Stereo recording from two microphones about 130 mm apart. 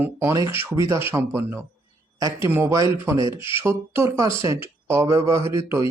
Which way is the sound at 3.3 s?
45° left (ahead or behind).